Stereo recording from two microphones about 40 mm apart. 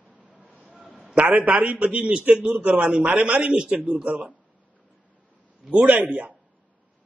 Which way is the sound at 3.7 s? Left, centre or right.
Right.